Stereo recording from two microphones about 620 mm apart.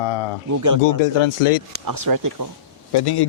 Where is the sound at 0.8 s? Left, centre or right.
Left.